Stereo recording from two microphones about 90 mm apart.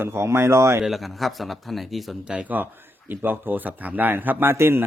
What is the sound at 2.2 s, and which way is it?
A man's voice, 10° right (ahead or behind).